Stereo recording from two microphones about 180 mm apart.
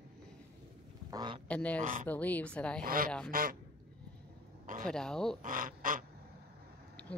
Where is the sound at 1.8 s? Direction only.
45° right (ahead or behind).